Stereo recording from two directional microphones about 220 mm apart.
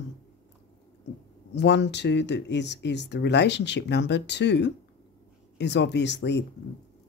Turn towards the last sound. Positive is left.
turn(degrees=50)  # may be behind; listen again after turning